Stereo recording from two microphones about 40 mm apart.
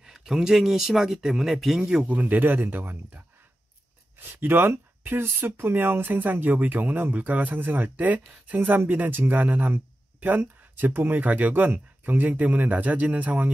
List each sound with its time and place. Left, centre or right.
0.0 s speech: centre
1.8 s speech: centre
2.0 s speech: right
4.2 s speech: right